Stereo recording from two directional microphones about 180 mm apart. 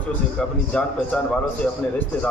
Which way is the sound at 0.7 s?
5° left (ahead or behind).